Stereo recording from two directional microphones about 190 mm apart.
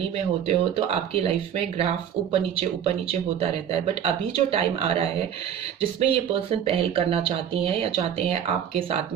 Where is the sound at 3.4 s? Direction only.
30° right (ahead or behind).